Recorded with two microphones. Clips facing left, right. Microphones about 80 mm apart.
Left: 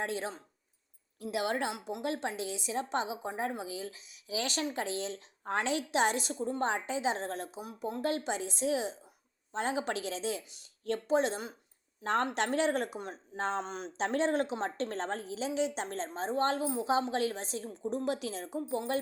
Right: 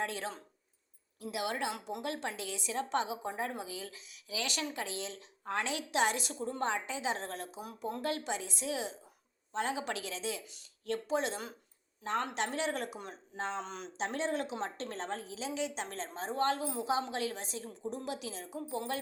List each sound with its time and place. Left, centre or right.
0.0 s speech: left
1.2 s a woman's voice: left
2.0 s a woman's voice: left
8.0 s a woman's voice: left
12.0 s speech: left
13.6 s speech: left
14.0 s a woman's voice: left
18.0 s speech: left